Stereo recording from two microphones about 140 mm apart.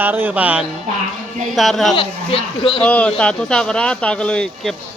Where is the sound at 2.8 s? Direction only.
10° left (ahead or behind).